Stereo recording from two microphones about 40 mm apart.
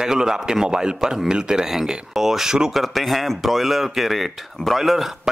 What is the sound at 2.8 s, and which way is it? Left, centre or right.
Speech, centre.